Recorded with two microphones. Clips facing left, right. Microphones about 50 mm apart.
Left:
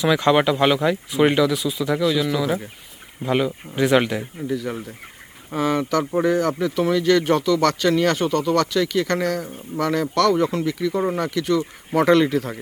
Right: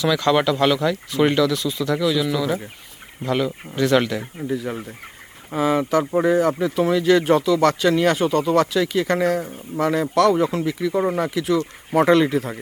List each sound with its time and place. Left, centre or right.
0.0 s speech: centre
5.5 s speech: centre